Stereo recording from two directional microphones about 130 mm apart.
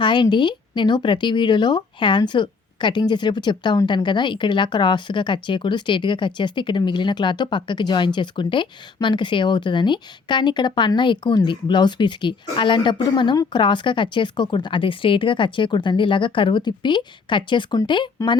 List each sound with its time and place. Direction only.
0.0 s speech: 35° left (ahead or behind)